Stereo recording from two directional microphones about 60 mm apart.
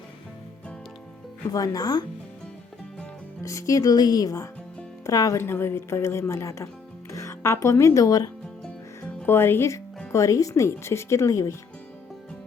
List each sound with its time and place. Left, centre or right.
1.5 s speech: left
3.4 s speech: left
5.0 s speech: left
5.4 s a woman's voice: left
9.2 s speech: left
10.1 s speech: left
10.5 s a woman's voice: left